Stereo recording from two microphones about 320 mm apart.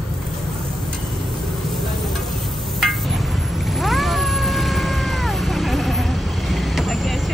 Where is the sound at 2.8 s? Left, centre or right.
Centre.